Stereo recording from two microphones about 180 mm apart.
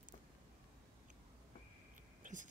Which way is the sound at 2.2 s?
45° right (ahead or behind).